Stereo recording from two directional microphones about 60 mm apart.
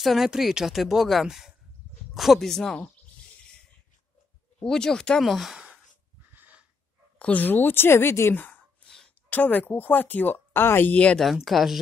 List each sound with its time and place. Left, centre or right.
0.0 s speech: centre
4.6 s speech: centre
5.2 s speech: centre
6.3 s snort: right
7.2 s speech: left
7.4 s speech: left
8.8 s a sound: centre
9.3 s speech: left
11.4 s speech: centre